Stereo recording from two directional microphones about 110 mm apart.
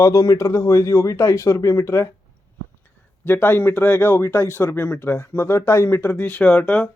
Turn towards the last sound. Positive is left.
turn(degrees=15)  # may be behind; listen again after turning